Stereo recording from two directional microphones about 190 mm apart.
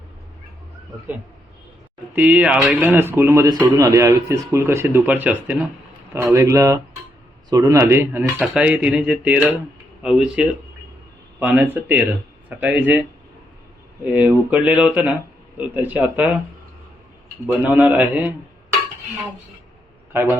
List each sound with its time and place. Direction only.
2.1 s a man's voice: 10° right (ahead or behind)
14.0 s a man's voice: 10° right (ahead or behind)
17.5 s a man's voice: 10° right (ahead or behind)